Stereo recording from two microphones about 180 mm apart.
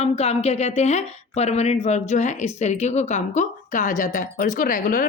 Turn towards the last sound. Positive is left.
turn(degrees=50)  # may be behind; listen again after turning